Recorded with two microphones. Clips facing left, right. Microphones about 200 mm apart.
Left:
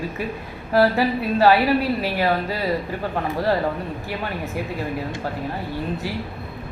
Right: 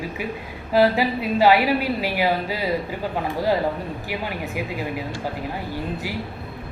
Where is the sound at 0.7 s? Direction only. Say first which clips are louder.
Even; 15° right (ahead or behind).